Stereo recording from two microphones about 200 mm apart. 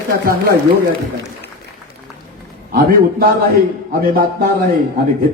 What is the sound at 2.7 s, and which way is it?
A man's voice, 45° right (ahead or behind).